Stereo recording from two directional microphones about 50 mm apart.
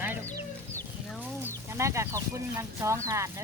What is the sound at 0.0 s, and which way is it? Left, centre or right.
Chicken, right.